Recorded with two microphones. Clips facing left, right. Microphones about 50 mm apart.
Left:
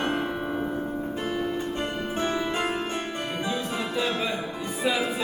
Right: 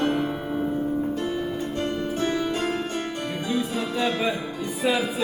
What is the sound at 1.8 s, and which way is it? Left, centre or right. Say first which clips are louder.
Music: right 2 dB; left.